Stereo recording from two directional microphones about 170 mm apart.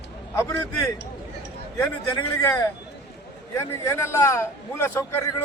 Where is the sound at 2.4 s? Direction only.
15° left (ahead or behind).